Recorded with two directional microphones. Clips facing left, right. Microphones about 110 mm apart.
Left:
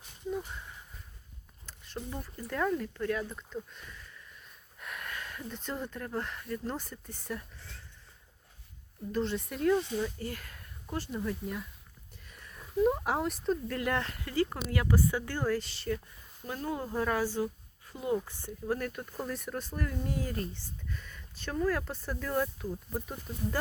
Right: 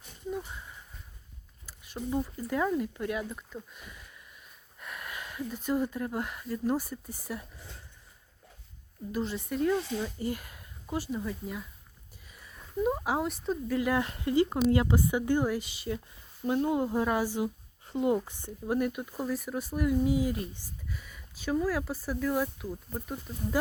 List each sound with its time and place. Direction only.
0.3 s a sound: 5° right (ahead or behind)
1.6 s speech: 10° right (ahead or behind)
4.8 s speech: centre (ahead or behind)
9.1 s speech: 5° right (ahead or behind)
10.0 s speech: 15° right (ahead or behind)
12.2 s a sound: 5° right (ahead or behind)
14.0 s speech: 20° right (ahead or behind)
17.8 s speech: 25° right (ahead or behind); by 23.1 s centre (ahead or behind)